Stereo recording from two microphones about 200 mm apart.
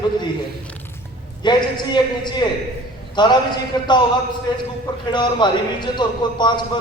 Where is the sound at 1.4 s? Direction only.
20° left (ahead or behind).